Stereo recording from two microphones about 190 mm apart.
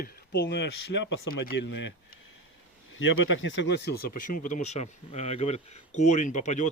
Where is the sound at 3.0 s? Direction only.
80° left.